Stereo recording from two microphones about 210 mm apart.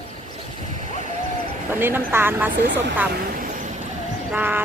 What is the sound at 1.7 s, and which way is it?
Speech, 10° right (ahead or behind).